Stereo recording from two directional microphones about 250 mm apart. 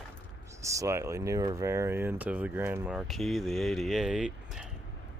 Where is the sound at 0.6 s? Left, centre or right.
Centre.